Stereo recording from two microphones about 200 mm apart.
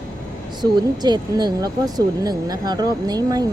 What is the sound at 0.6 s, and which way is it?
Speech, 20° right (ahead or behind).